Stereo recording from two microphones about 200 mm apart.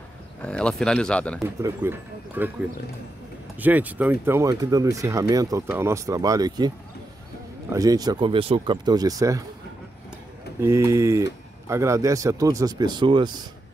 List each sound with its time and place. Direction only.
0.4 s speech: 5° left (ahead or behind)
1.4 s speech: 15° right (ahead or behind)
3.5 s speech: 10° right (ahead or behind)
7.7 s speech: 20° right (ahead or behind)
10.6 s speech: 15° right (ahead or behind)